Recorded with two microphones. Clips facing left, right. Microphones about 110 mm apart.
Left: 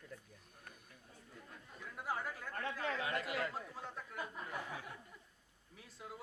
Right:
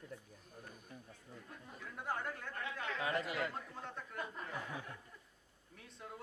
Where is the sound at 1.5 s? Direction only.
Centre (ahead or behind).